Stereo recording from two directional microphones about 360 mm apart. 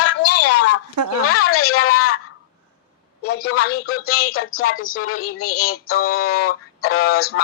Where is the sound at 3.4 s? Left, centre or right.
Left.